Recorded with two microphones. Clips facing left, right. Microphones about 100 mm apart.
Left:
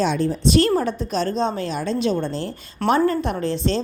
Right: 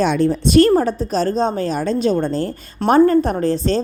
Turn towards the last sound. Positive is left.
turn(degrees=-40)  # may be behind; listen again after turning